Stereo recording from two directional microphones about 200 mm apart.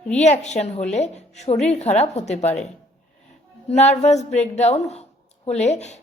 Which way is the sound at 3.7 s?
35° left (ahead or behind).